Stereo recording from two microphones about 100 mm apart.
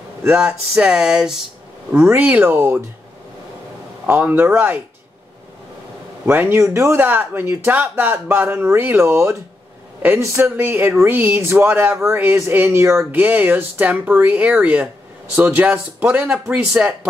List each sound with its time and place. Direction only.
0.4 s speech: 10° right (ahead or behind)
1.9 s speech: 15° right (ahead or behind)
4.0 s speech: 20° right (ahead or behind)
6.2 s speech: 20° right (ahead or behind)